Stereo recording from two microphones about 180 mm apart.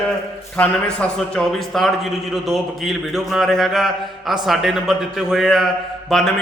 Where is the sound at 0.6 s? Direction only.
5° left (ahead or behind).